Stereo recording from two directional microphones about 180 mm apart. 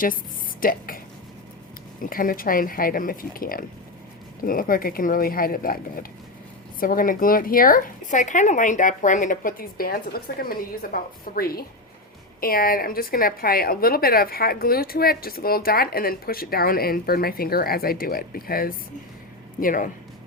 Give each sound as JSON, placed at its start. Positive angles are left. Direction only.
{"t": 0.6, "sound": "speech", "side_deg": 50}
{"t": 2.0, "sound": "a woman's voice", "side_deg": 50}